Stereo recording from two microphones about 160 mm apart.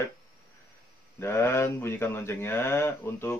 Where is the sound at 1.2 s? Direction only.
15° left (ahead or behind).